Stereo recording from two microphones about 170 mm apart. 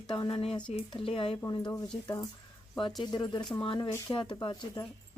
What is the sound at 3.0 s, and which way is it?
Speech, 25° left (ahead or behind).